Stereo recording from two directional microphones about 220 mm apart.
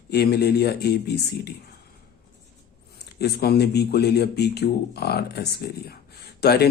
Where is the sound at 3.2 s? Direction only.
45° left (ahead or behind).